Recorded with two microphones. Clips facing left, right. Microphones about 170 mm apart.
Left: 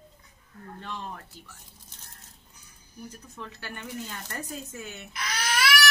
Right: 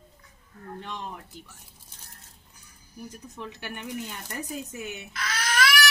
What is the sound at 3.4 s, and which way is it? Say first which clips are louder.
Speech: right 2 dB; 20° right (ahead or behind).